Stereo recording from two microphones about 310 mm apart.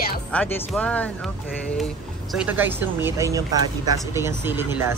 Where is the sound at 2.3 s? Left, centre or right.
Centre.